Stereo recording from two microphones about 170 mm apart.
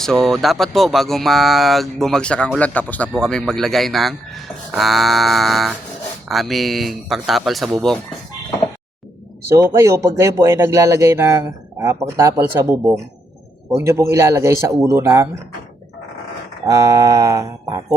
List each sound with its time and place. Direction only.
0.0 s speech: centre (ahead or behind)
9.5 s speech: 15° right (ahead or behind)
16.6 s mantra: 20° right (ahead or behind)